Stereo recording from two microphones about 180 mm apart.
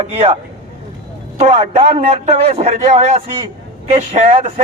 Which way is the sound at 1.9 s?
35° right (ahead or behind).